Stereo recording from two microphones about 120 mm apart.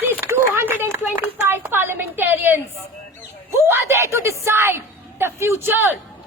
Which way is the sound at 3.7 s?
25° right (ahead or behind).